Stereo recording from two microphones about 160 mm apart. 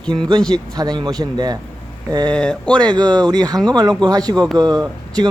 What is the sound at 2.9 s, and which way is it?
Speech, 25° right (ahead or behind).